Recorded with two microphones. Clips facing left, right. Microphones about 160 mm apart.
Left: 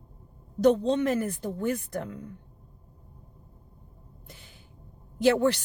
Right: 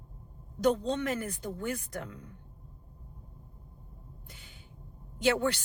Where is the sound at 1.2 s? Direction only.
35° left (ahead or behind).